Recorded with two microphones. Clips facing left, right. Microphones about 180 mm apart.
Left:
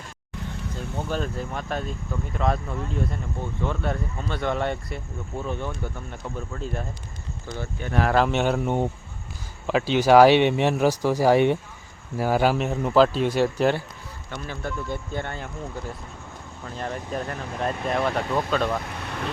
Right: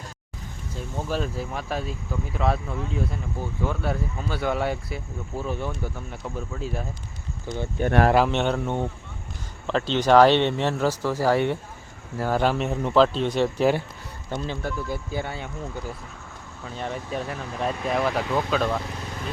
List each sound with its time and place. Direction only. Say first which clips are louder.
0.9 s speech: right 1 dB; 5° right (ahead or behind)
7.4 s speech: right 3 dB; 15° right (ahead or behind)
7.8 s speech: right 5 dB; 55° right (ahead or behind)
8.1 s speech: even; centre (ahead or behind)
14.3 s speech: right 5 dB; 25° right (ahead or behind)
14.6 s speech: right 1 dB; 5° right (ahead or behind)
18.9 s vehicle: left 2 dB; 65° left (ahead or behind)